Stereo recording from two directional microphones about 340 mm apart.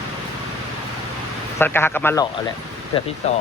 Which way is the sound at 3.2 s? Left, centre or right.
Centre.